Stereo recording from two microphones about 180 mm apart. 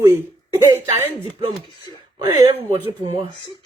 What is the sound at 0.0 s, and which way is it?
Speech, 15° right (ahead or behind).